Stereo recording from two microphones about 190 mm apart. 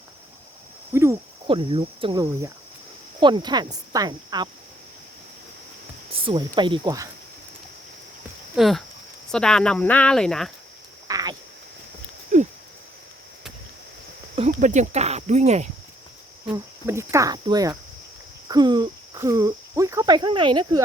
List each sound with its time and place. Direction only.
0.9 s cricket: 15° right (ahead or behind)
1.5 s speech: 25° right (ahead or behind)
6.1 s speech: 30° right (ahead or behind)
8.5 s speech: centre (ahead or behind)
11.1 s a sound: 20° right (ahead or behind)
12.3 s a sound: 40° right (ahead or behind)
14.3 s speech: 40° right (ahead or behind)
16.5 s cricket: 15° right (ahead or behind)
18.4 s speech: 20° right (ahead or behind)